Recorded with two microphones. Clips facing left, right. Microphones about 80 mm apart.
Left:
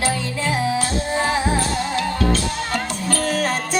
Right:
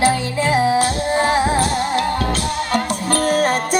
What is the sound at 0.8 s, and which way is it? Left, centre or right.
Music, right.